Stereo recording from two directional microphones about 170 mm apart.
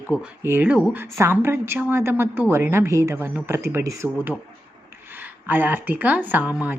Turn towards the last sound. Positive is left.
turn(degrees=-10)  # may be behind; listen again after turning